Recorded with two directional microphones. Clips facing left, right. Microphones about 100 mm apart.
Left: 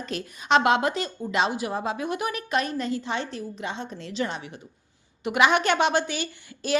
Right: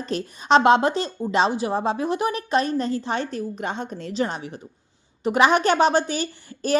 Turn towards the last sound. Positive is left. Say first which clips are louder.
# right 5 dB
turn(degrees=-40)  # may be behind; listen again after turning